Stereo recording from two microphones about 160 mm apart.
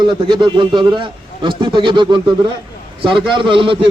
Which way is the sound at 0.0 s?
30° right (ahead or behind).